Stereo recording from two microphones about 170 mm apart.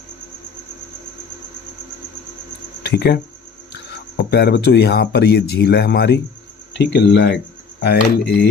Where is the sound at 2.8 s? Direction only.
75° left (ahead or behind).